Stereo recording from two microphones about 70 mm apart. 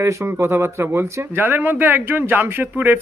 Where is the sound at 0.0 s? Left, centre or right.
Right.